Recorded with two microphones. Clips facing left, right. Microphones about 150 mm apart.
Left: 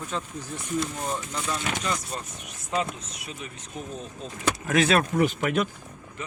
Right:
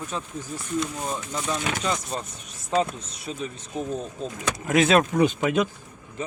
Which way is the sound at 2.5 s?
35° right (ahead or behind).